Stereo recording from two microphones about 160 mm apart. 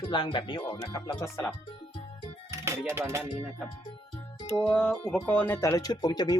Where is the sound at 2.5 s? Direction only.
15° right (ahead or behind).